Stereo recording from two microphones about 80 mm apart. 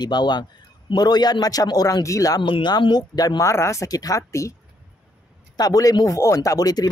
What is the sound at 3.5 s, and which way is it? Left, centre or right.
Speech, left.